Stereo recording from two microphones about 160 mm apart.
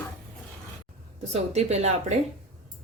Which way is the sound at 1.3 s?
45° right (ahead or behind).